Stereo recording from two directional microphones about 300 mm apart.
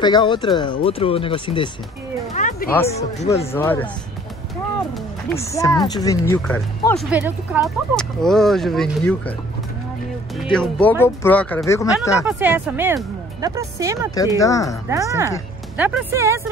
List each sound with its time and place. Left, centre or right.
0.0 s speech: centre
2.3 s music: left
2.7 s speech: centre
5.5 s speech: centre
7.0 s speech: centre
10.3 s speech: centre
12.3 s speech: centre
14.4 s speech: centre
14.9 s speech: centre